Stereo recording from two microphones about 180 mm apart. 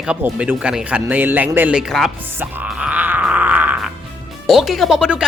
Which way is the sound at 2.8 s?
5° right (ahead or behind).